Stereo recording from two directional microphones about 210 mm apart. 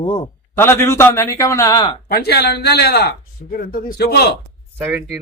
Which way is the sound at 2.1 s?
50° left (ahead or behind).